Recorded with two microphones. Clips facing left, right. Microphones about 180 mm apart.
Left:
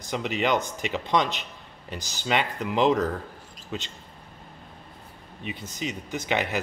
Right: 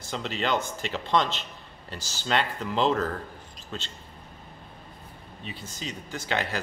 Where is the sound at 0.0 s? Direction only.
15° left (ahead or behind).